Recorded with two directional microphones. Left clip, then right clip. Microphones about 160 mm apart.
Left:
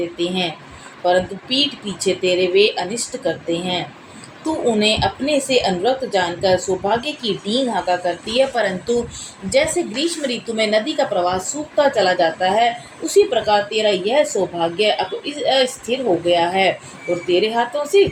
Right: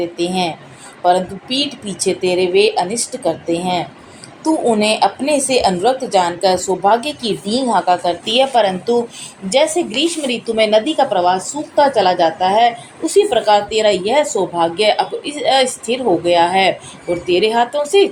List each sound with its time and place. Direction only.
0.2 s a woman's voice: 35° right (ahead or behind)